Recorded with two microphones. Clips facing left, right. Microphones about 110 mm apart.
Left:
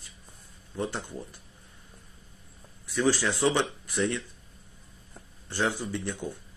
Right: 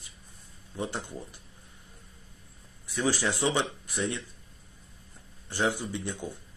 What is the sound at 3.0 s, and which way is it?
Speech, 15° right (ahead or behind).